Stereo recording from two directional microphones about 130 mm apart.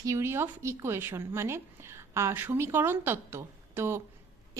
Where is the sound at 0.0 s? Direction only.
20° right (ahead or behind).